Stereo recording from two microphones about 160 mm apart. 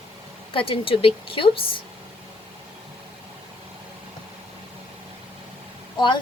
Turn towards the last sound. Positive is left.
turn(degrees=30)  # may be behind; listen again after turning